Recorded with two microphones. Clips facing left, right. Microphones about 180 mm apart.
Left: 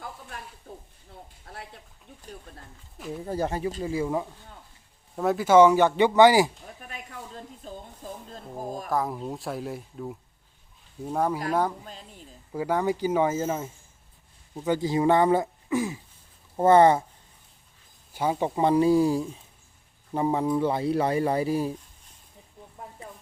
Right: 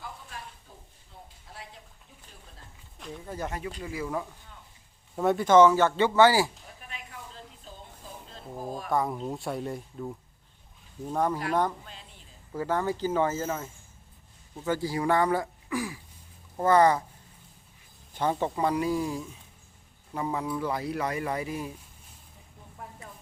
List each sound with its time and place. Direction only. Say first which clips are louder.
0.7 s stir: left 9 dB; 55° left (ahead or behind)
1.5 s a sound: left 5 dB; 60° left (ahead or behind)
3.2 s speech: left 7 dB; 35° left (ahead or behind)
5.1 s speech: left 1 dB; centre (ahead or behind); by 6.5 s 15° left (ahead or behind)
6.8 s a sound: left 2 dB; 45° left (ahead or behind)
8.0 s a sound: left 7 dB; 50° left (ahead or behind)
8.9 s speech: even; centre (ahead or behind)
12.5 s speech: left 3 dB; 15° left (ahead or behind)
18.1 s speech: left 2 dB; 10° left (ahead or behind); by 21.8 s 30° left (ahead or behind)